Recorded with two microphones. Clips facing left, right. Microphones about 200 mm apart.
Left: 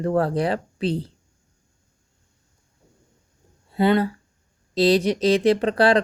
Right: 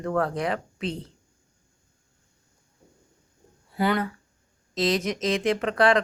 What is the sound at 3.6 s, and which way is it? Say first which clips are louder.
Speech: left 6 dB; 25° left (ahead or behind).